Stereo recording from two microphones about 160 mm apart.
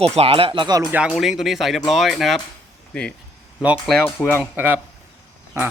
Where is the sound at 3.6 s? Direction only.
5° right (ahead or behind).